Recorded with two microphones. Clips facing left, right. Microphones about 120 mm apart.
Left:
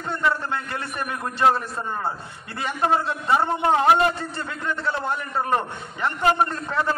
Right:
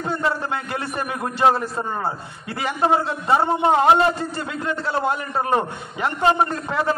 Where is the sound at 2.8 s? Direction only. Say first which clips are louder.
Right 2 dB; 25° right (ahead or behind).